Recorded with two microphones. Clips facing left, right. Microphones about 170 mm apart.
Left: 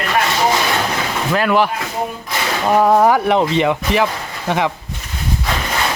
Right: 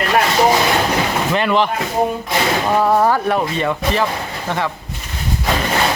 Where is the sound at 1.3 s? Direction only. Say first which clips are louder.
Left 3 dB; centre (ahead or behind).